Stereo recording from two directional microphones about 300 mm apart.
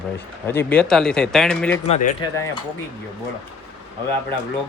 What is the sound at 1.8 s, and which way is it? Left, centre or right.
Speech, left.